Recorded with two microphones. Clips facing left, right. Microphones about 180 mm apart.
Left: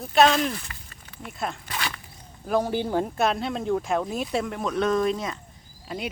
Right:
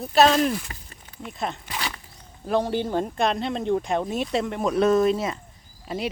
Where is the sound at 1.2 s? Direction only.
Centre (ahead or behind).